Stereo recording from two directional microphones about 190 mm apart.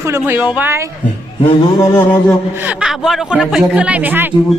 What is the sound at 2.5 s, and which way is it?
A man's voice, 10° right (ahead or behind).